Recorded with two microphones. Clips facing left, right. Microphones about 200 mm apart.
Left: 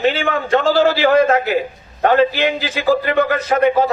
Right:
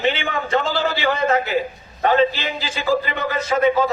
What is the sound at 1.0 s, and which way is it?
A man's voice, 55° left (ahead or behind).